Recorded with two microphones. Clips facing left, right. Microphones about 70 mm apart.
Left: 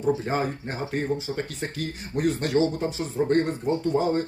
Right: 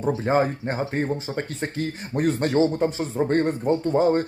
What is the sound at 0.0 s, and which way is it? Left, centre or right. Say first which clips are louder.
Speech: right 3 dB; right.